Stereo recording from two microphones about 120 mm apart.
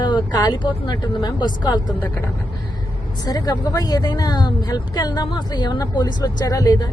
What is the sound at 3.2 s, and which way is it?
A woman's voice, 35° left (ahead or behind).